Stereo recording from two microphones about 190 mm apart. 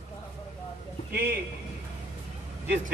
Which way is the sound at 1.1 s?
60° right (ahead or behind).